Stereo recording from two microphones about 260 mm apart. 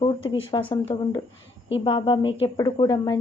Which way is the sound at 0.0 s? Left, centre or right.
Left.